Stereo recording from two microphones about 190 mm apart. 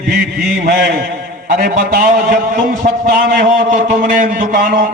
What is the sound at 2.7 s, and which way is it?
A man's voice, 45° right (ahead or behind).